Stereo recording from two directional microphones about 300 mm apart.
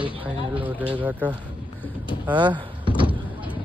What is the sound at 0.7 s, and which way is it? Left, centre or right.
Speech, centre.